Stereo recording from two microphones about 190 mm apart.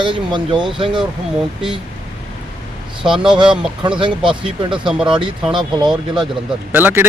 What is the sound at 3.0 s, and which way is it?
Speech, 5° right (ahead or behind).